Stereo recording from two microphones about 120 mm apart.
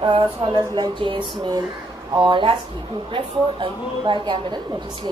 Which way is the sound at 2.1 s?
40° right (ahead or behind).